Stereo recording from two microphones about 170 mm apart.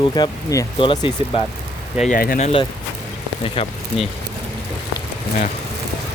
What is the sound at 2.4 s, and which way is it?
Speech, 40° left (ahead or behind).